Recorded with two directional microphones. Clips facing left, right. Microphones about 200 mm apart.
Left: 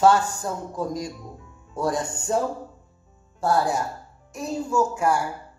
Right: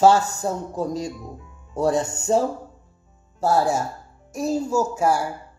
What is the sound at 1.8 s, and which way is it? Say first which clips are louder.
Speech: right 4 dB; 25° right (ahead or behind).